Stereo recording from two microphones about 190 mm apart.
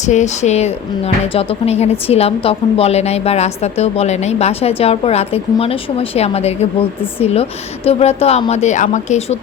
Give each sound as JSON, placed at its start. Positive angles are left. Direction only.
{"t": 0.0, "sound": "speech", "side_deg": 40}